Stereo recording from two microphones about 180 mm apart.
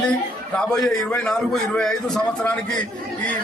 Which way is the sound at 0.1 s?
5° left (ahead or behind).